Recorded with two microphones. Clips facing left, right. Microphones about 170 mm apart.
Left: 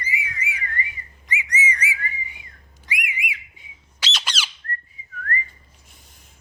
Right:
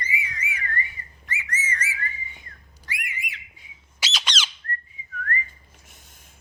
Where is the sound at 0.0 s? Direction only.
10° left (ahead or behind).